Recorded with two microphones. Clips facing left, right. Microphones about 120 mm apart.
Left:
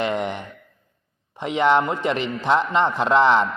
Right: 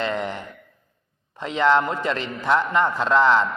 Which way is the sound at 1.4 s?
20° left (ahead or behind).